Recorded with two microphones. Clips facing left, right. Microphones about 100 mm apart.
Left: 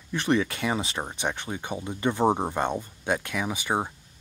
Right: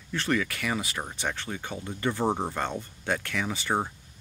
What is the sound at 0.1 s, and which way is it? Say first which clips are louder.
Speech: left 3 dB; 20° left (ahead or behind).